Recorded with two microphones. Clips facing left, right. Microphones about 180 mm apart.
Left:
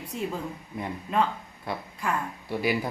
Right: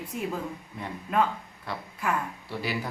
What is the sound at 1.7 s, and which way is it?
A man's voice, 15° left (ahead or behind).